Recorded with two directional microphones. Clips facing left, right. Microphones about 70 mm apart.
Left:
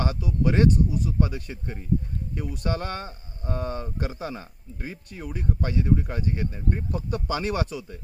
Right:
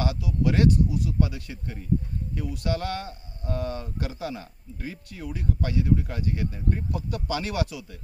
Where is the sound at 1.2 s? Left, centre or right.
Left.